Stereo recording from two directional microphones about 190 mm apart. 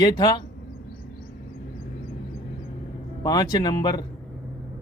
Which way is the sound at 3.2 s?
20° left (ahead or behind).